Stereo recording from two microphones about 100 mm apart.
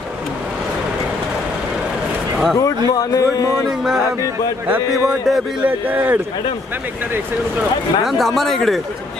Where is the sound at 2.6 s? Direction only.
35° left (ahead or behind).